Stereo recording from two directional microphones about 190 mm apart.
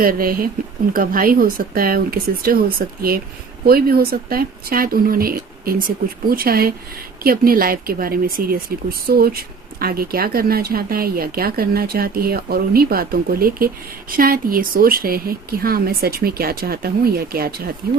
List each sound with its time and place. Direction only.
0.0 s speech: 50° right (ahead or behind)